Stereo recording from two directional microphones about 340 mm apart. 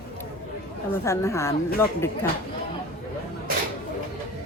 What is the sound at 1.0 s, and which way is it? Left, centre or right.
A woman's voice, centre.